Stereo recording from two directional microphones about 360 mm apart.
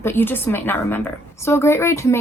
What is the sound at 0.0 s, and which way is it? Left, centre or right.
A woman's voice, centre.